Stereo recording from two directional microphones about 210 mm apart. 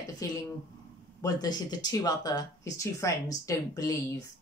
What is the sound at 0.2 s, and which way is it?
Speech, 15° left (ahead or behind).